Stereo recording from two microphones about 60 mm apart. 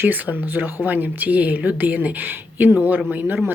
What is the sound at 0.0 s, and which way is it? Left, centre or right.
Speech, right.